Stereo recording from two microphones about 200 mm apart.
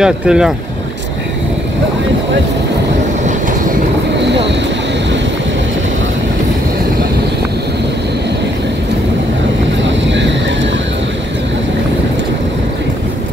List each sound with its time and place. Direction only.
0.0 s speech: 5° right (ahead or behind)
4.2 s vehicle: 60° right (ahead or behind)
9.8 s vehicle: 65° right (ahead or behind)